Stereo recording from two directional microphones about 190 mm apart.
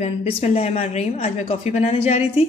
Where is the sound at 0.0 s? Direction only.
35° left (ahead or behind).